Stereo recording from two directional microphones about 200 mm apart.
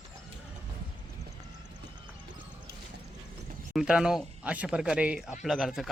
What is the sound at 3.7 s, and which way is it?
Speech, 5° right (ahead or behind).